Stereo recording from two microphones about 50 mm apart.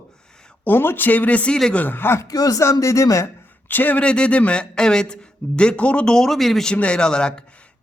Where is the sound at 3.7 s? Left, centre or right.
Left.